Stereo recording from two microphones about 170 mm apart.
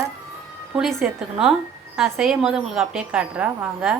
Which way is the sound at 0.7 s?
Centre (ahead or behind).